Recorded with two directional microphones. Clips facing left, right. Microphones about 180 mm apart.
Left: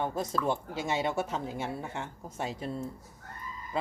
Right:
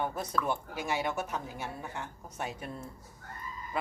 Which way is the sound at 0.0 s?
25° left (ahead or behind).